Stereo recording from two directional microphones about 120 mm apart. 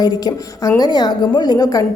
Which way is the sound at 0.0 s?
35° left (ahead or behind).